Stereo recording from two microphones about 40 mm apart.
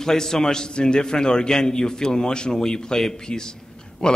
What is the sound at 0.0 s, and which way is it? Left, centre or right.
A man's voice, centre.